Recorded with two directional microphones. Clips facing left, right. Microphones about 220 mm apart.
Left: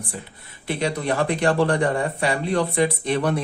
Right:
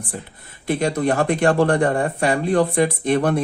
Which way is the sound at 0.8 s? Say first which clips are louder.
Right 3 dB; 45° right (ahead or behind).